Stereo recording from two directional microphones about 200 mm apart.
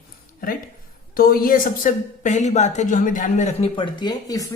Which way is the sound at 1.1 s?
45° left (ahead or behind).